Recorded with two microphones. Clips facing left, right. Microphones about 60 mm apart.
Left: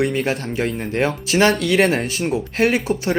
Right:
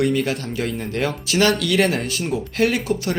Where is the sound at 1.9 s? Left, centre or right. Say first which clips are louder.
Left 3 dB; left.